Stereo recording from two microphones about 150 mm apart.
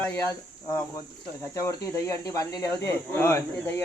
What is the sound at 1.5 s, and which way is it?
Speech, 20° left (ahead or behind).